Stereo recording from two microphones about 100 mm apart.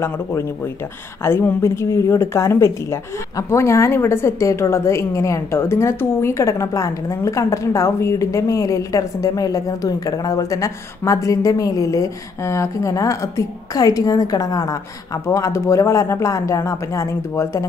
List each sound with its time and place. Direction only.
0.0 s a woman's voice: 25° left (ahead or behind)